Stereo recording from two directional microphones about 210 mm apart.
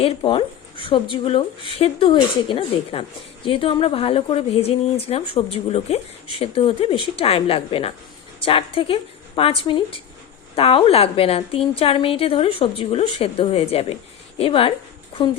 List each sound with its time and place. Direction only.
0.0 s speech: 25° left (ahead or behind)